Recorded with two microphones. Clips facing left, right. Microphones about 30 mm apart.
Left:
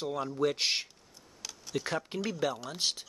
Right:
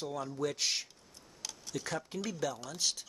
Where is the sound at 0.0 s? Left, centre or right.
Left.